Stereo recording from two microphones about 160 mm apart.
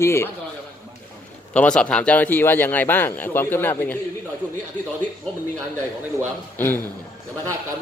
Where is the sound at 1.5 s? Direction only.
5° left (ahead or behind).